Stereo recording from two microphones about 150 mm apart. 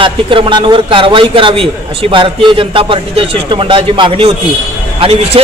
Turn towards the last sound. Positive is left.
turn(degrees=-45)  # may be behind; listen again after turning